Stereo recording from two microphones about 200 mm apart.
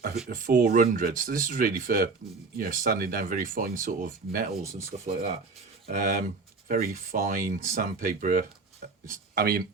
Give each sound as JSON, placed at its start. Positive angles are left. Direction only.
{"t": 0.3, "sound": "speech", "side_deg": -40}
{"t": 5.9, "sound": "speech", "side_deg": -40}